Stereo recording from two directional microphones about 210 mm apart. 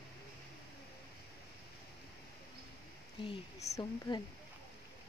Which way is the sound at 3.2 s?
30° left (ahead or behind).